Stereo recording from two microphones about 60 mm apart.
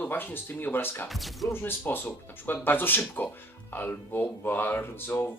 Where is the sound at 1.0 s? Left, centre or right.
Centre.